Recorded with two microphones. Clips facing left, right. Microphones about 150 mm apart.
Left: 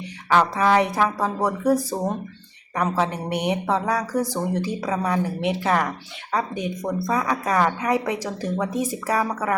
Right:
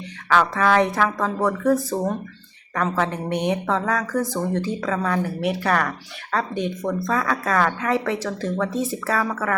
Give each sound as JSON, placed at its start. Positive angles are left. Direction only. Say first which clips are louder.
{"t": 0.3, "sound": "a woman's voice", "louder": "even", "side_deg": 15}